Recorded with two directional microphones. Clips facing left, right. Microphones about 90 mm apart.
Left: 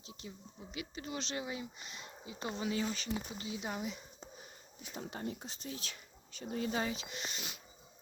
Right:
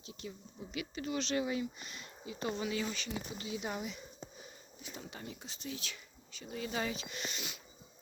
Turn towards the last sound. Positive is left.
turn(degrees=35)  # may be behind; listen again after turning